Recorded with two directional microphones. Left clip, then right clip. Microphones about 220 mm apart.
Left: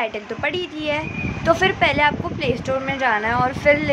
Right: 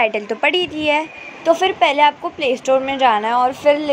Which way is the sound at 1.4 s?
10° right (ahead or behind).